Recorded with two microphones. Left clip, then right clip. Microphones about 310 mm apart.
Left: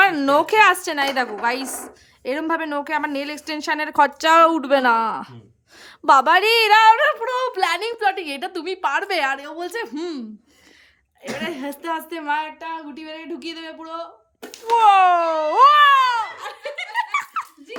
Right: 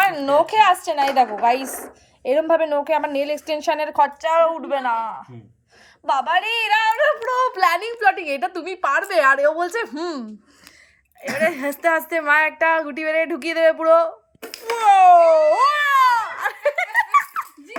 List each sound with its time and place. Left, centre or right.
0.0 s a woman's voice: centre
6.1 s a woman's voice: centre
14.8 s a sound: centre